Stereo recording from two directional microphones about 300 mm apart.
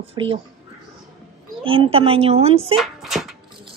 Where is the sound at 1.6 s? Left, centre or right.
Centre.